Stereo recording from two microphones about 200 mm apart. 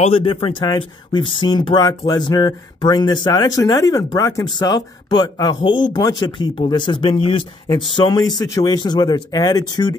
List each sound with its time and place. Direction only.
0.0 s speech: 25° left (ahead or behind)